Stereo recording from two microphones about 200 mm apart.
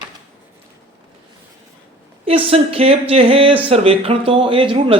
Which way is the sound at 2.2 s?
30° right (ahead or behind).